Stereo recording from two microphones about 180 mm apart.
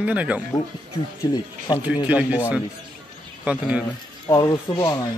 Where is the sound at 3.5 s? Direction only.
5° right (ahead or behind).